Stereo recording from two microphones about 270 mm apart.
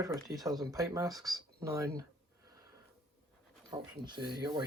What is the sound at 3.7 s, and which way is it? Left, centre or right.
Speech, centre.